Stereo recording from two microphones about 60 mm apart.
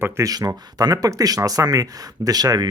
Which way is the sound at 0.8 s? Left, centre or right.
Right.